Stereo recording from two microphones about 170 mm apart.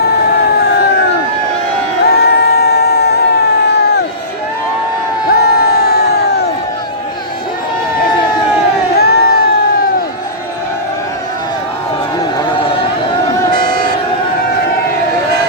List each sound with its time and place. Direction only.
2.1 s a sound: 70° left (ahead or behind)
5.3 s crowd: 65° left (ahead or behind)
9.0 s crowd: 65° left (ahead or behind)
13.5 s battle cry: 55° right (ahead or behind)